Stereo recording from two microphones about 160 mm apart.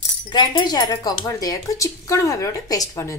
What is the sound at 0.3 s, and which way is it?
A woman's voice, 25° left (ahead or behind).